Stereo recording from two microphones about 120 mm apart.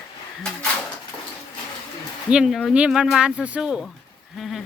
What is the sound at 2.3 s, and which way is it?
Speech, 5° right (ahead or behind).